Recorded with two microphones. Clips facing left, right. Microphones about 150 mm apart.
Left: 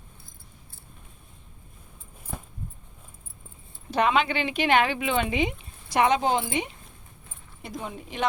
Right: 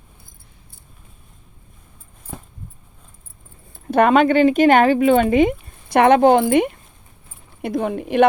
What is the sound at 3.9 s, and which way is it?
Speech, 50° right (ahead or behind).